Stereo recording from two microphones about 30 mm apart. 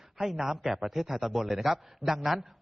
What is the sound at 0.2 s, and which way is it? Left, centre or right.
A man's voice, centre.